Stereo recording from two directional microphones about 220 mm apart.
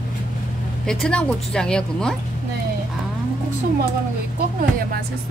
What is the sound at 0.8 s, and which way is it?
A woman's voice, 5° left (ahead or behind).